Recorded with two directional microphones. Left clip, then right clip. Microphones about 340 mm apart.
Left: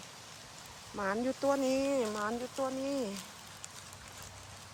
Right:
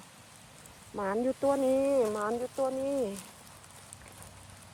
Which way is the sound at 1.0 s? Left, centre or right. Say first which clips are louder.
Right 3 dB; centre.